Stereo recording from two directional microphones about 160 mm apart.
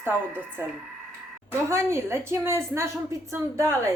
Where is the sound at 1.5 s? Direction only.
15° right (ahead or behind).